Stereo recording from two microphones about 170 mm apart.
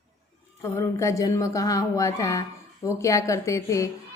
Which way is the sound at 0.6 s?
15° left (ahead or behind).